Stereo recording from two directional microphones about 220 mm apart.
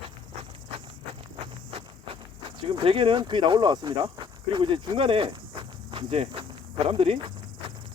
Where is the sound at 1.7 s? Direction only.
25° right (ahead or behind).